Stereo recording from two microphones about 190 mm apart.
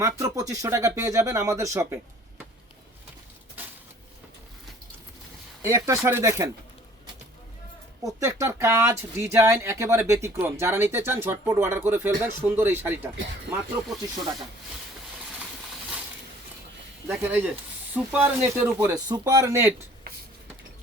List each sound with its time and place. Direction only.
0.0 s speech: 15° right (ahead or behind)
5.6 s speech: 15° right (ahead or behind)
8.0 s speech: 15° right (ahead or behind)
17.1 s speech: 10° right (ahead or behind)
20.1 s a sound: 55° right (ahead or behind)